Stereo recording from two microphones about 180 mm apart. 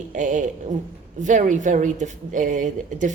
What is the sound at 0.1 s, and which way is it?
A woman's voice, 45° right (ahead or behind).